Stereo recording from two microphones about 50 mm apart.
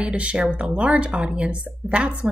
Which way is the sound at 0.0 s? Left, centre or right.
Right.